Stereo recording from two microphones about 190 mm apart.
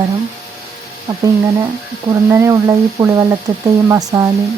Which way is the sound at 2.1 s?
15° right (ahead or behind).